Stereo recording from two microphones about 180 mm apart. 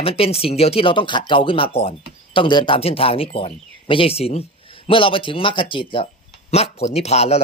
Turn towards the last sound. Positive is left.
turn(degrees=35)  # may be behind; listen again after turning